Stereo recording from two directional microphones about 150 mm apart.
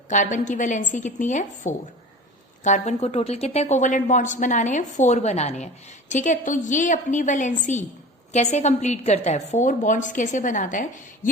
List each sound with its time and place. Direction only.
0.1 s a woman's voice: 55° left (ahead or behind)